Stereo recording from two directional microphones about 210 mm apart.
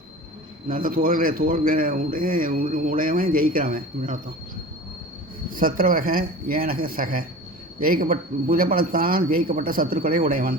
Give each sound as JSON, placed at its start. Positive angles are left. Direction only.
{"t": 0.7, "sound": "speech", "side_deg": -40}
{"t": 5.5, "sound": "speech", "side_deg": -40}